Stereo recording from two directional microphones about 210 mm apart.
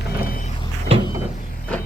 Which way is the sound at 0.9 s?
25° right (ahead or behind).